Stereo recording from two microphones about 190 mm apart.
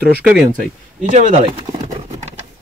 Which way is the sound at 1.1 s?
30° right (ahead or behind).